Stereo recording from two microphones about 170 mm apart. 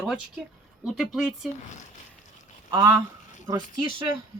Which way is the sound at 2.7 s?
20° right (ahead or behind).